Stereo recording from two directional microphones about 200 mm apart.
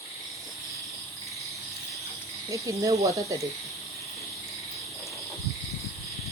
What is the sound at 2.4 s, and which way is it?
Speech, 15° right (ahead or behind).